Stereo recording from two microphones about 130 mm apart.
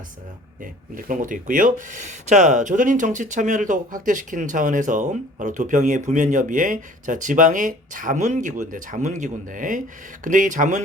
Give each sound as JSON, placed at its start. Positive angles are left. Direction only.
{"t": 0.6, "sound": "speech", "side_deg": -90}